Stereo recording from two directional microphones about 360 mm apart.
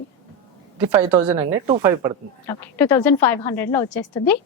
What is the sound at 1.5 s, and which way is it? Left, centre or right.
Speech, centre.